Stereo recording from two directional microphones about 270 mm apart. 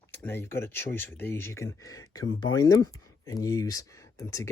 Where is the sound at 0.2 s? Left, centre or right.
Centre.